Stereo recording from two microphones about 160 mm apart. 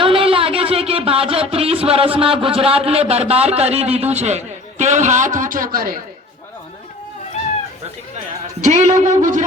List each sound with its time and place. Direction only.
0.0 s a sound: 35° right (ahead or behind); by 5.6 s 55° right (ahead or behind)
5.7 s speech: 65° right (ahead or behind)
8.6 s speech: 50° right (ahead or behind)